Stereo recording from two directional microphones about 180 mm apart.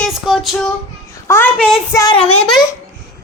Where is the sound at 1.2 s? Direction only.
10° left (ahead or behind).